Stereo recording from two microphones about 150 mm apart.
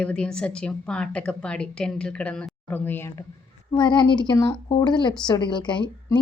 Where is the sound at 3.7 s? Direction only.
30° left (ahead or behind).